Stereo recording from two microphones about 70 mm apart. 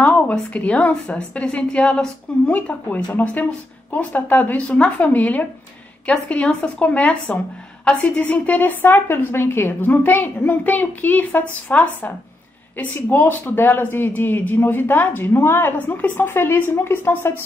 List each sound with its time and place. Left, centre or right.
0.0 s a woman's voice: centre
2.5 s a woman's voice: left